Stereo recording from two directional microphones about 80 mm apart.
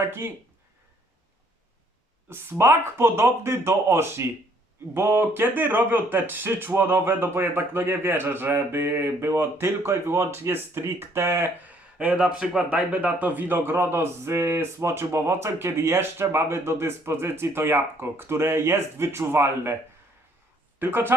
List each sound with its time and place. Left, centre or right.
0.0 s speech: right
2.3 s speech: right
11.6 s speech: centre
20.7 s speech: right